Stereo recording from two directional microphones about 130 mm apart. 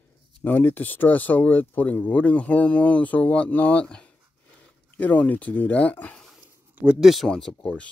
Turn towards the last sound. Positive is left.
turn(degrees=5)  # may be behind; listen again after turning